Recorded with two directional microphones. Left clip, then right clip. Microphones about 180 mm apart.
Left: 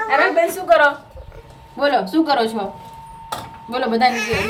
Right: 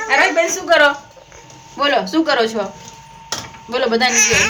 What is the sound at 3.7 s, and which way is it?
Speech, 10° right (ahead or behind).